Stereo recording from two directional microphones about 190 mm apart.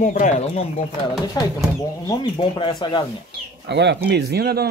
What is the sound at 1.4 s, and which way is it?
Speech, 20° left (ahead or behind).